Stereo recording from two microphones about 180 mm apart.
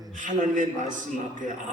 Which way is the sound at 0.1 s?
45° right (ahead or behind).